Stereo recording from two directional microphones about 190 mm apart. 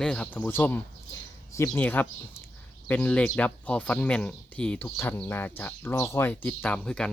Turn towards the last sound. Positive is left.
turn(degrees=5)  # may be behind; listen again after turning